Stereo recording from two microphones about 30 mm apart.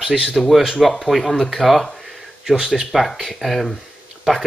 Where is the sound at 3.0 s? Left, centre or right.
Centre.